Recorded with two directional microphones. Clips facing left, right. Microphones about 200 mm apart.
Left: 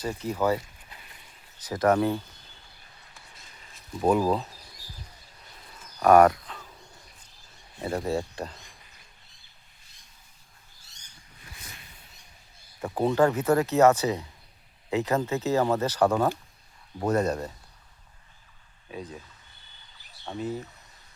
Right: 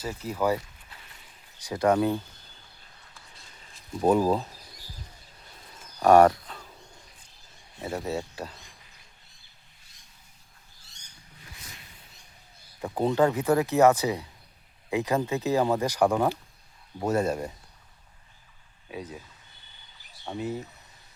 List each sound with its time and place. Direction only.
0.0 s speech: 5° right (ahead or behind)
1.5 s speech: 15° right (ahead or behind)
4.2 s speech: 10° right (ahead or behind)
6.0 s speech: 30° right (ahead or behind)
7.9 s speech: 5° right (ahead or behind)
12.8 s speech: 15° right (ahead or behind)
18.9 s speech: 5° right (ahead or behind)
20.2 s speech: 10° right (ahead or behind)